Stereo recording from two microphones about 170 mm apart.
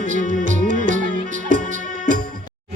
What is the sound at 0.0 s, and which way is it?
Music, 50° right (ahead or behind).